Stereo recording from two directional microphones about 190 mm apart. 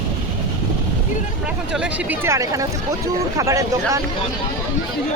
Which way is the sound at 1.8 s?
10° right (ahead or behind).